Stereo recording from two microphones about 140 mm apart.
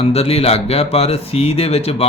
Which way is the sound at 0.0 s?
45° left (ahead or behind).